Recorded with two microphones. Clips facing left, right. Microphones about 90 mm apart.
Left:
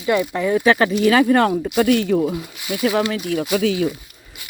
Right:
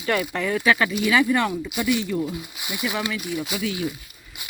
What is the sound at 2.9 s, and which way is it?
Speech, 35° left (ahead or behind).